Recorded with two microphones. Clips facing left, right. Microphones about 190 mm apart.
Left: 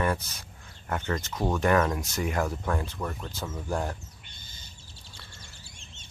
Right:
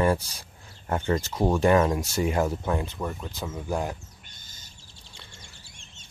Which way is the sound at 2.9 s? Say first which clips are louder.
Right 2 dB; 10° right (ahead or behind).